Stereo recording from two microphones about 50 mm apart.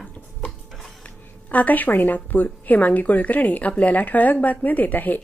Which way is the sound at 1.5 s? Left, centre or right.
Left.